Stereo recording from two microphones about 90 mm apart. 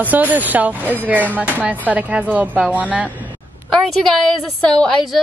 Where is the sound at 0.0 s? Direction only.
20° right (ahead or behind).